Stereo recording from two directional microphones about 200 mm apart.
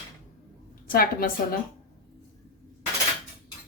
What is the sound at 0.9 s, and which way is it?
Speech, 45° left (ahead or behind).